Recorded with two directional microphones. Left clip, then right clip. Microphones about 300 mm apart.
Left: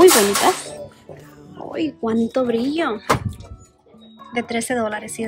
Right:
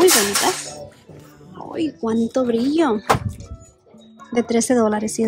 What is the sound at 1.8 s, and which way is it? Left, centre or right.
Speech, centre.